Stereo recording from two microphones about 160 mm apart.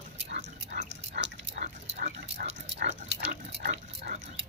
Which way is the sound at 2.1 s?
90° right.